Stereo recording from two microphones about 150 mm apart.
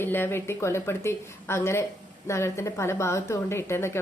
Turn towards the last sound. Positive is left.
turn(degrees=15)  # may be behind; listen again after turning